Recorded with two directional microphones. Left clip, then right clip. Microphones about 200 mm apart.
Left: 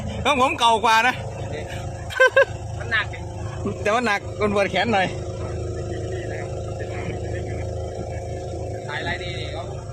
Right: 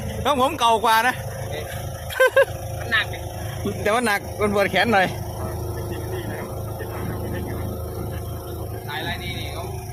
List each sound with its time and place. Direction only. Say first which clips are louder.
0.2 s speech: left 1 dB; centre (ahead or behind)
2.1 s dog: left 1 dB; centre (ahead or behind)
3.8 s speech: even; 10° right (ahead or behind)
8.9 s music: even; 20° left (ahead or behind)